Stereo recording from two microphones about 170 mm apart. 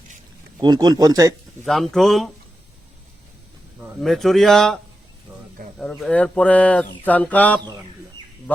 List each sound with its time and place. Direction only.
0.6 s speech: 25° right (ahead or behind)
1.6 s speech: centre (ahead or behind)
4.0 s speech: centre (ahead or behind)
5.8 s speech: 5° left (ahead or behind)